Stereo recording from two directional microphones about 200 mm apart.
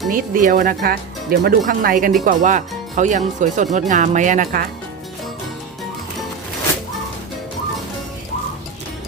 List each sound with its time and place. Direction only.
0.1 s speech: 45° right (ahead or behind)